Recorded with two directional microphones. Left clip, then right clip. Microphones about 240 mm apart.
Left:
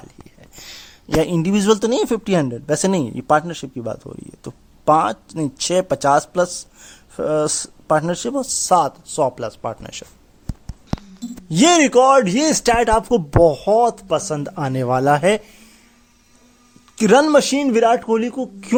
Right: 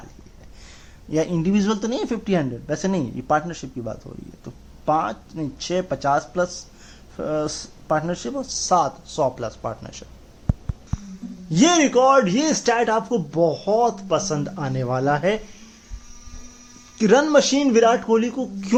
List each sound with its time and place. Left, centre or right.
0.6 s speech: left
11.4 s speech: left
17.0 s speech: left